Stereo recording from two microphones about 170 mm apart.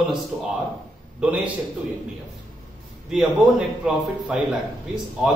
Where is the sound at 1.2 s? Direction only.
10° right (ahead or behind).